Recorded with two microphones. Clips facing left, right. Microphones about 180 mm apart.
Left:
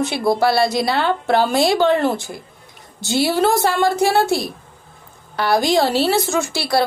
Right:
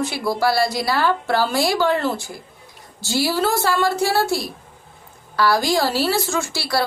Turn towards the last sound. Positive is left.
turn(degrees=20)  # may be behind; listen again after turning